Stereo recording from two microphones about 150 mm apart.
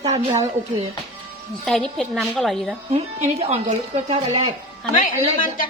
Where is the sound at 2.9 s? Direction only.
45° right (ahead or behind).